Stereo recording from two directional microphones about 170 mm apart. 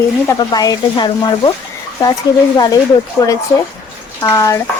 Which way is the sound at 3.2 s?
15° left (ahead or behind).